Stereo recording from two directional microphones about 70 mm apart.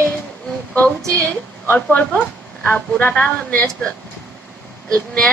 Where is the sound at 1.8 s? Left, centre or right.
Centre.